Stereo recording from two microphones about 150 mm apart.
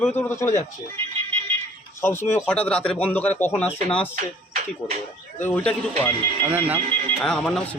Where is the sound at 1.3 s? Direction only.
40° right (ahead or behind).